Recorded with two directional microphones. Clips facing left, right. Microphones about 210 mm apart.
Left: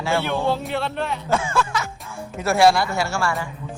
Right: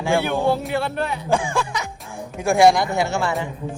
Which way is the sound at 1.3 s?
15° right (ahead or behind).